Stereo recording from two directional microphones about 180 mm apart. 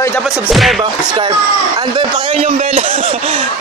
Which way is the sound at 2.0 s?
30° right (ahead or behind).